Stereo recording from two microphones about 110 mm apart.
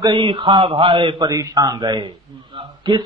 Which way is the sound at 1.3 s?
35° right (ahead or behind).